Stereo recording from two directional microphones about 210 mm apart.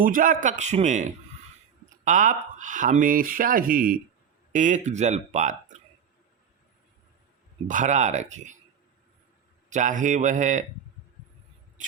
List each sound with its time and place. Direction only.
0.0 s speech: 40° right (ahead or behind)
7.7 s speech: 35° right (ahead or behind)
9.6 s speech: 35° right (ahead or behind)